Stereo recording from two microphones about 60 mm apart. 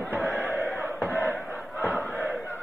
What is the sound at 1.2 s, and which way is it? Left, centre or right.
Crowd, right.